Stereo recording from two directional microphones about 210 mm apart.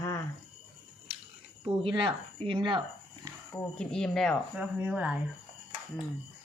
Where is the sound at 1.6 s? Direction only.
25° right (ahead or behind).